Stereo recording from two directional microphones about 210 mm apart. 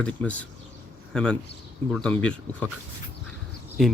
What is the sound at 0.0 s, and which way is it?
Speech, 5° left (ahead or behind).